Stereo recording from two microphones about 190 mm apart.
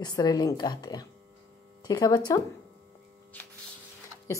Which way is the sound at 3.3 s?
10° left (ahead or behind).